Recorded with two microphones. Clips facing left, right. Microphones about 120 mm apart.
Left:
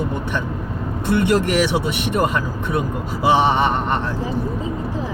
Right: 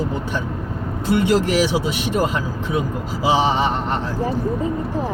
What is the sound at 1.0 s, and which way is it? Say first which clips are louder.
Speech: even; 60° left (ahead or behind).